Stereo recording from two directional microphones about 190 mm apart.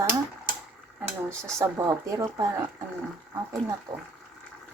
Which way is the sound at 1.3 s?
15° right (ahead or behind).